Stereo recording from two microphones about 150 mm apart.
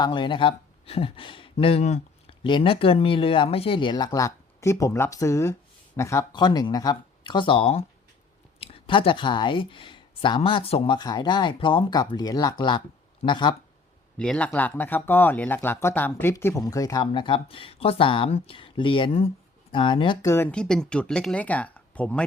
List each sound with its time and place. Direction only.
0.0 s speech: 35° left (ahead or behind)
2.4 s speech: 35° left (ahead or behind)
14.2 s speech: 5° left (ahead or behind); by 20.1 s 35° left (ahead or behind)
20.2 s speech: 15° left (ahead or behind)